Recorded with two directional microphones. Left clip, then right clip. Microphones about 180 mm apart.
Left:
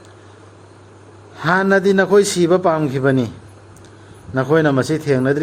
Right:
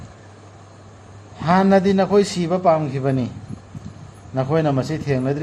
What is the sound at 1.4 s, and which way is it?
A man's voice, 55° left (ahead or behind).